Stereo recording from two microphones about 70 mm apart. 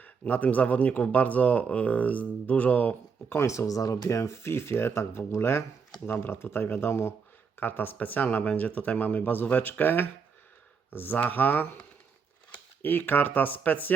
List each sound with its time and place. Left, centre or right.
0.0 s speech: left
3.3 s speech: left